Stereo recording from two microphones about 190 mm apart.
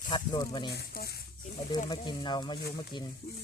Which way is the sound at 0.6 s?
55° left (ahead or behind).